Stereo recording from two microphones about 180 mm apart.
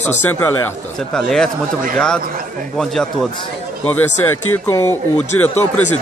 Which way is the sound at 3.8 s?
10° left (ahead or behind).